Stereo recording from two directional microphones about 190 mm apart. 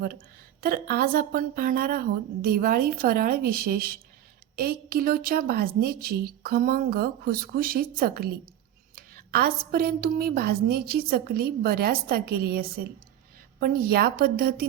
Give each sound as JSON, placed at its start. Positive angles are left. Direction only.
{"t": 0.6, "sound": "a woman's voice", "side_deg": -50}